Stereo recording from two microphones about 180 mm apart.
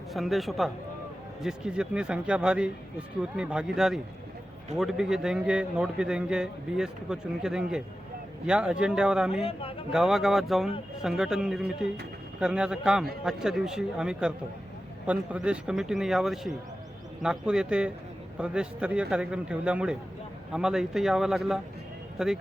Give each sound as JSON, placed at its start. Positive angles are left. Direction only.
{"t": 0.1, "sound": "a man's voice", "side_deg": 0}
{"t": 9.3, "sound": "speech", "side_deg": 30}
{"t": 9.9, "sound": "a man's voice", "side_deg": 0}